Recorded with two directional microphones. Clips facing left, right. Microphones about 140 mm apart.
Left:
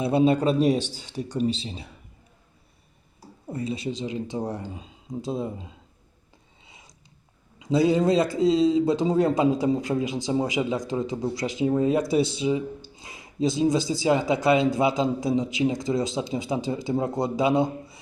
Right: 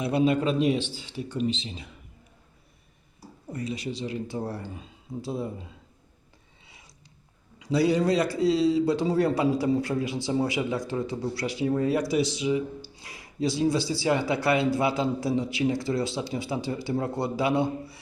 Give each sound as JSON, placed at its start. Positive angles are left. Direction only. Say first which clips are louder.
{"t": 0.0, "sound": "speech", "louder": "left 3 dB", "side_deg": 30}
{"t": 3.5, "sound": "a man's voice", "louder": "left 3 dB", "side_deg": 25}
{"t": 6.7, "sound": "a sound", "louder": "left 3 dB", "side_deg": 20}
{"t": 7.6, "sound": "a man's voice", "louder": "left 2 dB", "side_deg": 20}